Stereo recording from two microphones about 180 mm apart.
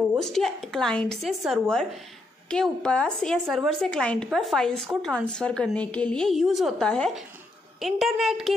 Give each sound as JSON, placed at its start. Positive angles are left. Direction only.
{"t": 0.2, "sound": "speech", "side_deg": 0}